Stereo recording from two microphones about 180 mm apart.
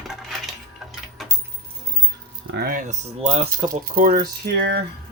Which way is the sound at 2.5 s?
55° right (ahead or behind).